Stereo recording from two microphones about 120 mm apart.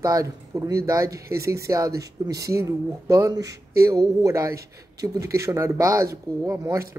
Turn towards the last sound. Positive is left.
turn(degrees=-20)  # may be behind; listen again after turning